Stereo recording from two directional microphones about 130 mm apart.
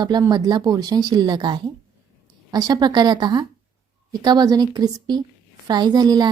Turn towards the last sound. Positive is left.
turn(degrees=-30)  # may be behind; listen again after turning